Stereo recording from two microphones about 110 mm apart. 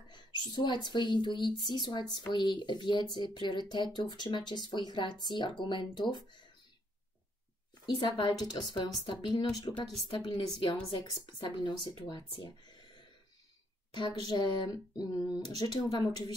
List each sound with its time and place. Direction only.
0.1 s speech: 40° left (ahead or behind)
7.8 s speech: 45° left (ahead or behind)
13.9 s speech: 40° left (ahead or behind)